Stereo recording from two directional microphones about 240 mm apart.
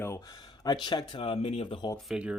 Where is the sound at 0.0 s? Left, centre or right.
Centre.